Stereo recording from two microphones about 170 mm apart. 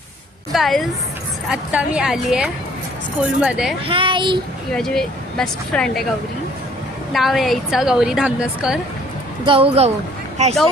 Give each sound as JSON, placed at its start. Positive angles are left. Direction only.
{"t": 0.5, "sound": "a woman's voice", "side_deg": 0}
{"t": 3.8, "sound": "a child's voice", "side_deg": -30}
{"t": 4.7, "sound": "a woman's voice", "side_deg": 5}
{"t": 7.1, "sound": "a woman's voice", "side_deg": 0}
{"t": 9.5, "sound": "speech", "side_deg": -35}